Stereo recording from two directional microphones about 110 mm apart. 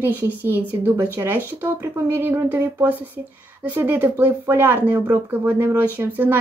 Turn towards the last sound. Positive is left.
turn(degrees=-15)  # may be behind; listen again after turning